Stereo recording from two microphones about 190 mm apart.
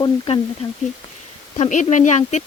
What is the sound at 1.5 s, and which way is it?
Speech, 35° left (ahead or behind).